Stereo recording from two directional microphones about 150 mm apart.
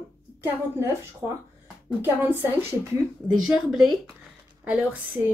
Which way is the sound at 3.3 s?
5° right (ahead or behind).